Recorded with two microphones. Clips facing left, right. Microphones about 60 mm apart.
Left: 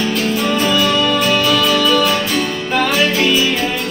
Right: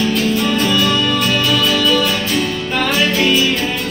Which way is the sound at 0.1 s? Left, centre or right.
Centre.